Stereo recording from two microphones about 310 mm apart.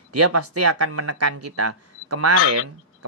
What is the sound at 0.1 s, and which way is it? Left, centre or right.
Speech, right.